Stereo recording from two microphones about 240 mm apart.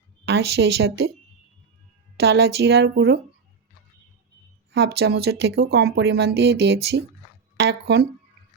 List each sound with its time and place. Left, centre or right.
0.3 s a woman's voice: right
2.1 s a woman's voice: right
4.7 s a woman's voice: right